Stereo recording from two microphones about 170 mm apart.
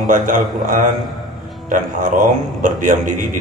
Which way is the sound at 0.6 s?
55° right (ahead or behind).